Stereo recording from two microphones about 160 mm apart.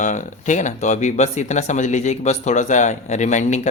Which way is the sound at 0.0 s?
50° left (ahead or behind).